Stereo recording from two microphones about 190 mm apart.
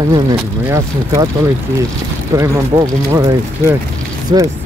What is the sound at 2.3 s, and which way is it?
Speech, 15° right (ahead or behind).